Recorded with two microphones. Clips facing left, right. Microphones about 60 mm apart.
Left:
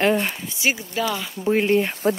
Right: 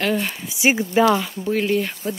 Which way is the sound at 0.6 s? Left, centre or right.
Right.